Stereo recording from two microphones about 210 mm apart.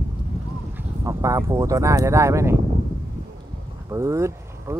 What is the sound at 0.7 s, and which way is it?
Speech, 15° right (ahead or behind).